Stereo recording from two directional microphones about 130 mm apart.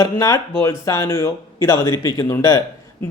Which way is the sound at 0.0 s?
25° left (ahead or behind).